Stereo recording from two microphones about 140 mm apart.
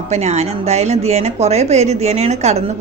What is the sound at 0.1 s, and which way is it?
Speech, 50° right (ahead or behind).